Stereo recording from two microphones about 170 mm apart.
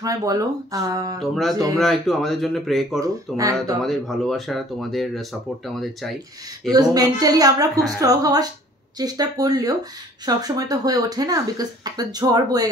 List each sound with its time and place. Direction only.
0.0 s speech: 20° right (ahead or behind)
1.2 s speech: centre (ahead or behind)
3.0 s speech: 20° right (ahead or behind)
3.8 s speech: centre (ahead or behind)
6.7 s speech: 20° right (ahead or behind)